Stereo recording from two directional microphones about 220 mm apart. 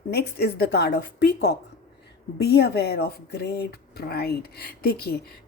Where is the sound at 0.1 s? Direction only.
45° left (ahead or behind).